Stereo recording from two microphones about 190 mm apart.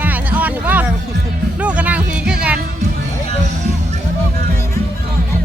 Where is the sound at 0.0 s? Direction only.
10° right (ahead or behind).